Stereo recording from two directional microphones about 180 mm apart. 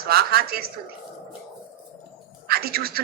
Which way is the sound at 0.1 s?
60° right (ahead or behind).